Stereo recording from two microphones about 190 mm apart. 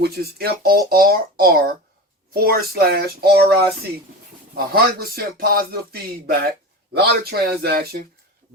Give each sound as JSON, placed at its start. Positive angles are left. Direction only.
{"t": 0.0, "sound": "speech", "side_deg": -55}